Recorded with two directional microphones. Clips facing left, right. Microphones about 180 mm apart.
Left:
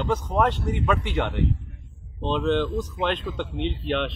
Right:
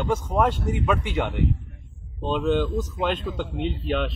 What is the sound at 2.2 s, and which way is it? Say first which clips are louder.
Speech: even; 10° right (ahead or behind).